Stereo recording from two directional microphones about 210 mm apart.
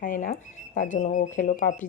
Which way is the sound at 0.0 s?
40° left (ahead or behind).